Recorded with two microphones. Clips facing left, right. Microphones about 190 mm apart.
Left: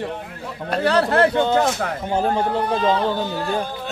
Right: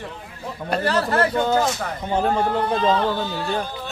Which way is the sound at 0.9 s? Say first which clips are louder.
Left 5 dB; 65° left (ahead or behind).